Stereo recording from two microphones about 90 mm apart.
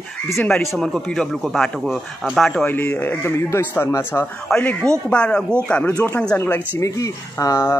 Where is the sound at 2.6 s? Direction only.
20° left (ahead or behind).